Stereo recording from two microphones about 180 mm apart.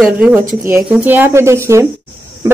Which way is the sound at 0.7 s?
10° right (ahead or behind).